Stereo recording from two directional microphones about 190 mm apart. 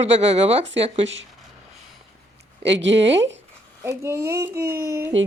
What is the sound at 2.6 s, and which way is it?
Speech, 70° right (ahead or behind).